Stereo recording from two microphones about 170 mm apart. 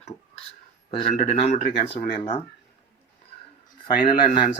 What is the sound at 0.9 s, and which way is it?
Speech, 40° left (ahead or behind).